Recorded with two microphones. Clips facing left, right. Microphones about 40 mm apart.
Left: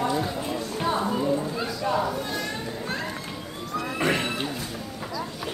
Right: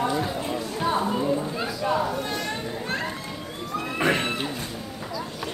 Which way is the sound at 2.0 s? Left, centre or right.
Right.